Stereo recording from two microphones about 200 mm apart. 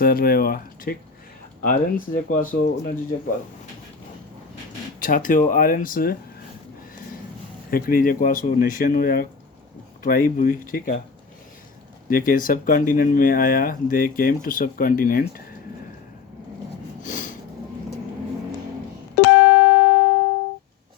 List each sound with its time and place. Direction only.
0.0 s speech: 45° left (ahead or behind)
4.9 s speech: 45° left (ahead or behind)
7.7 s speech: 45° left (ahead or behind)
12.0 s speech: 45° left (ahead or behind)
17.0 s a sound: 40° left (ahead or behind)
19.2 s music: 55° left (ahead or behind)